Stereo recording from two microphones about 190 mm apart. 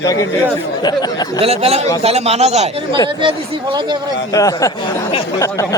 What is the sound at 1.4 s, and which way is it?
Speech, 30° right (ahead or behind).